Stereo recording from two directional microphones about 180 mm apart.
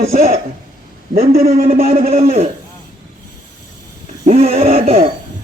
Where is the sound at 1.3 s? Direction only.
55° right (ahead or behind).